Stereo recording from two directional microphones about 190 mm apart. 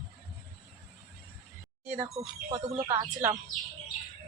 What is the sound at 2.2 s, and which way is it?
Speech, 35° right (ahead or behind).